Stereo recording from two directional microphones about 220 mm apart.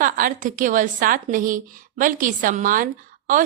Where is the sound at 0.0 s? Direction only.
40° right (ahead or behind).